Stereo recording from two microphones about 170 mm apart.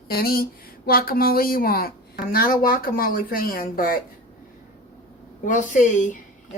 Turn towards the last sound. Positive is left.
turn(degrees=45)  # may be behind; listen again after turning